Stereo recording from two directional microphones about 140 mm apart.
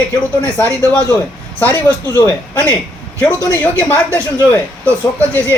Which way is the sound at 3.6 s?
10° left (ahead or behind).